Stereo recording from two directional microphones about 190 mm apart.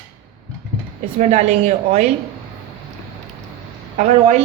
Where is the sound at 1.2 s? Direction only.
35° right (ahead or behind).